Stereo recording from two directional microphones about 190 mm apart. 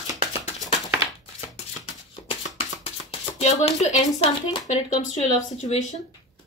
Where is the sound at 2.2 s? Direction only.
30° left (ahead or behind).